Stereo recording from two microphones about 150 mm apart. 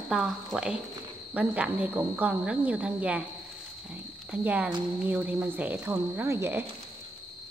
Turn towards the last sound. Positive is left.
turn(degrees=-15)  # may be behind; listen again after turning